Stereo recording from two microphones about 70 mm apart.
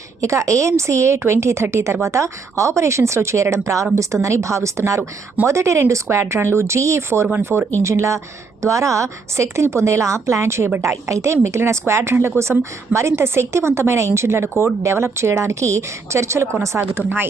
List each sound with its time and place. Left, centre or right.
0.2 s a woman's voice: right